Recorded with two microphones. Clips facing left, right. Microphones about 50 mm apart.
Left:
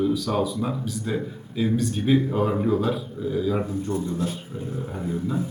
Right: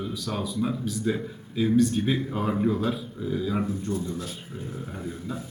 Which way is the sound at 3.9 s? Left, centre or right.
Left.